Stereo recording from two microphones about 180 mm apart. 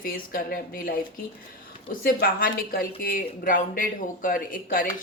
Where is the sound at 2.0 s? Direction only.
55° left (ahead or behind).